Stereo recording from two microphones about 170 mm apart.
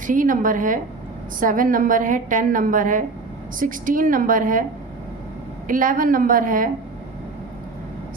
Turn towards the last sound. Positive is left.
turn(degrees=-55)  # may be behind; listen again after turning